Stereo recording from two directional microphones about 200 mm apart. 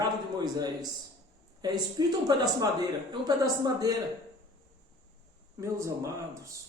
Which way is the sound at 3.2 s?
20° right (ahead or behind).